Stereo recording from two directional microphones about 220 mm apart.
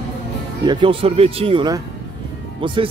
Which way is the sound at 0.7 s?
20° right (ahead or behind).